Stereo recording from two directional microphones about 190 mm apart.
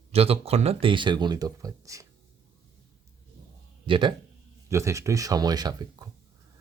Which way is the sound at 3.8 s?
25° right (ahead or behind).